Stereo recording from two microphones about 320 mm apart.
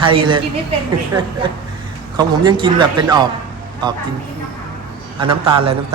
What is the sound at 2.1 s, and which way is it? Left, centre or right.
A man's voice, centre.